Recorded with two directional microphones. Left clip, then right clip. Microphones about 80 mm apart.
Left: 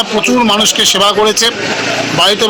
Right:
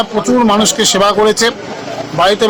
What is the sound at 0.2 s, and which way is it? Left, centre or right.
Speech, centre.